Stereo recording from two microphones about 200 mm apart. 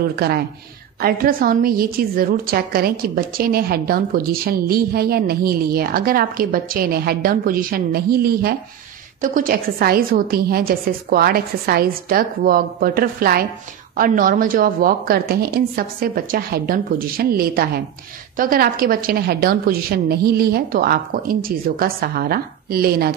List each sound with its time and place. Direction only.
0.0 s a woman's voice: 50° right (ahead or behind)